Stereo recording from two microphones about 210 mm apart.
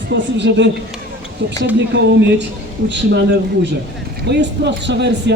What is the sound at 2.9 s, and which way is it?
Speech, 55° right (ahead or behind).